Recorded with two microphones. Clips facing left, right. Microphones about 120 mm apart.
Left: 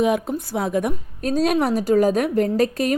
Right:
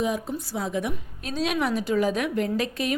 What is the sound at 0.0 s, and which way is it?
A woman's voice, 65° left (ahead or behind).